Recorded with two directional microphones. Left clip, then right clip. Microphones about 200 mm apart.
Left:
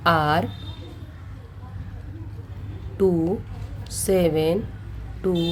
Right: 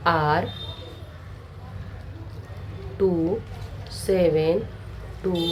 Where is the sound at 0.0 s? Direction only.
45° left (ahead or behind).